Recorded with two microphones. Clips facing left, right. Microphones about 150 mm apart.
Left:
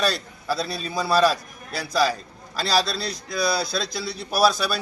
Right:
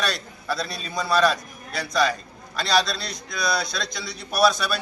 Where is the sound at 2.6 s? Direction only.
30° left (ahead or behind).